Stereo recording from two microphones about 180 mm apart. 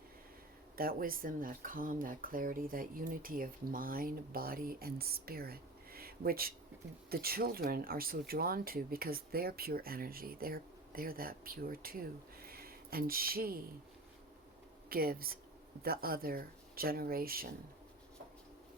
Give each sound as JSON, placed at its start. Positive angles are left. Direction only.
{"t": 0.8, "sound": "speech", "side_deg": -55}
{"t": 14.8, "sound": "speech", "side_deg": -55}